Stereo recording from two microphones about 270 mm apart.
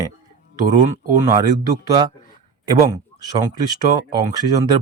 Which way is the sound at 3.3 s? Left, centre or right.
Centre.